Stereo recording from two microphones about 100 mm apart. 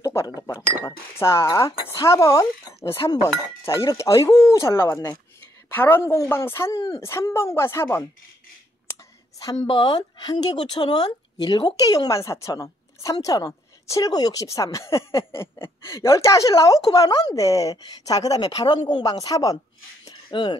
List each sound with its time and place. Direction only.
0.0 s chink: 30° left (ahead or behind)
0.6 s speech: 30° left (ahead or behind)
5.7 s speech: 20° left (ahead or behind)
9.8 s a woman's voice: 50° left (ahead or behind)
20.1 s a sound: 50° left (ahead or behind)